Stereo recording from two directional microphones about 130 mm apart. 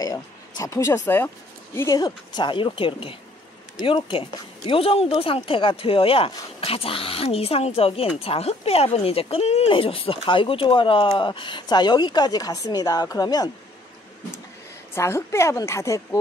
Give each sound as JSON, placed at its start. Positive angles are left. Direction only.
{"t": 0.0, "sound": "speech", "side_deg": 30}
{"t": 1.8, "sound": "speech", "side_deg": 30}
{"t": 15.0, "sound": "a woman's voice", "side_deg": 20}